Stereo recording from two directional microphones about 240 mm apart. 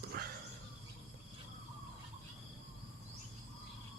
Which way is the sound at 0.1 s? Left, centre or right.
Right.